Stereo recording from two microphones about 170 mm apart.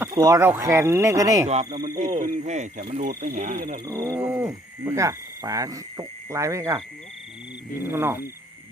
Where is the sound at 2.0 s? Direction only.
40° right (ahead or behind).